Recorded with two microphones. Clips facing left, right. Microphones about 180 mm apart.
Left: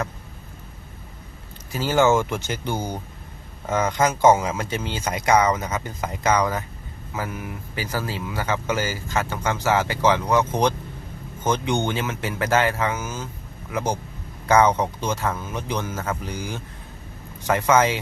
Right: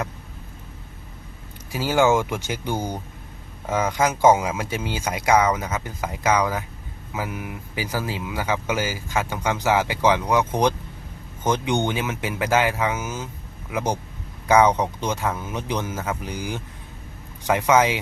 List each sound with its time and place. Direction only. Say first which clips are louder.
1.7 s speech: even; 10° right (ahead or behind)